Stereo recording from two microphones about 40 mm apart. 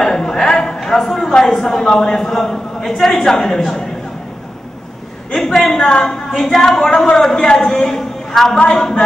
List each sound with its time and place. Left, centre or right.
0.0 s a sound: centre
1.5 s speech: centre
5.3 s speech: centre
5.7 s speech: centre
6.3 s a man's voice: centre